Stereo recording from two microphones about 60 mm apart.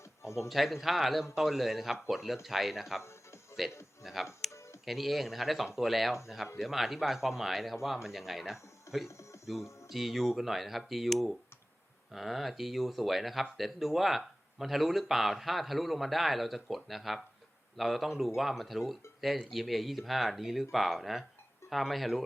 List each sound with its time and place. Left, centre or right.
0.0 s a sound: left
0.3 s speech: centre
3.0 s music: left
4.0 s speech: centre
4.5 s music: left
4.9 s speech: centre
9.0 s music: left
9.6 s a sound: left
9.9 s speech: centre